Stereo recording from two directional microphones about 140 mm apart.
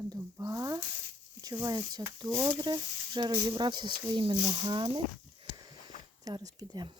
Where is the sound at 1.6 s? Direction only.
30° right (ahead or behind).